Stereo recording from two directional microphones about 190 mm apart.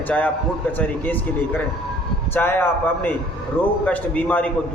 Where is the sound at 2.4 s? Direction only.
10° left (ahead or behind).